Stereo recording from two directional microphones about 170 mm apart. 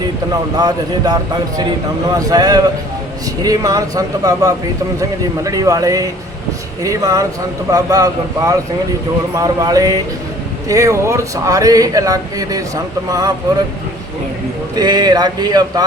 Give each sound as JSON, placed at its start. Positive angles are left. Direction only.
{"t": 0.5, "sound": "speech", "side_deg": -25}
{"t": 14.8, "sound": "speech", "side_deg": -25}